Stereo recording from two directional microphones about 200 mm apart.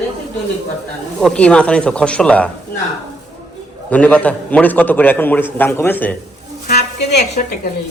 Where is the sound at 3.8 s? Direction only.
5° left (ahead or behind).